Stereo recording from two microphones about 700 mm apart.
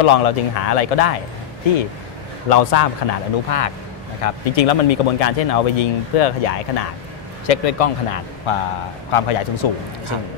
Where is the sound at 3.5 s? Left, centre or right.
Left.